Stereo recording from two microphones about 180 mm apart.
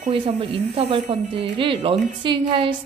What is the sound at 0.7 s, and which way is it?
A woman's voice, 30° right (ahead or behind).